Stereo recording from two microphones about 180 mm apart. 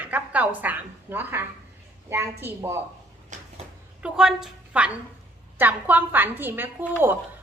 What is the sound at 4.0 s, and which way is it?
Speech, 5° right (ahead or behind).